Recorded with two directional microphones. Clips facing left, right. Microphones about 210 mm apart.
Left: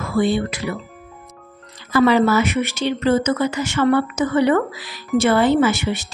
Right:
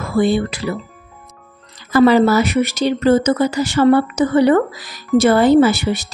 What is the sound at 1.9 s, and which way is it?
A woman's voice, 40° right (ahead or behind).